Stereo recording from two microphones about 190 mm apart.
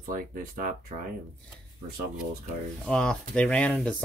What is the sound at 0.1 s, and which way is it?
Speech, 45° right (ahead or behind).